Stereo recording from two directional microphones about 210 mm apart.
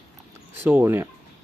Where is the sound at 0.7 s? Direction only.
10° right (ahead or behind).